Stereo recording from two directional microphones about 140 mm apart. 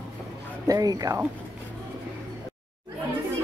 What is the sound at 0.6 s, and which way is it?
Speech, 25° right (ahead or behind).